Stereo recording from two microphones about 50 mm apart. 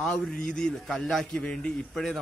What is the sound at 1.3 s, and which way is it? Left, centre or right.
Speech, left.